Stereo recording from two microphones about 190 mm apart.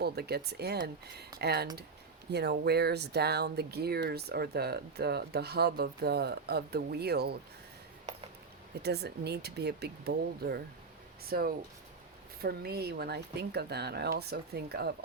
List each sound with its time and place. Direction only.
0.0 s speech: 55° right (ahead or behind)
8.8 s speech: 60° right (ahead or behind)